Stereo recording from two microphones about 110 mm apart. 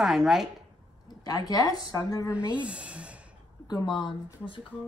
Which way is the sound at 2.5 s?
10° right (ahead or behind).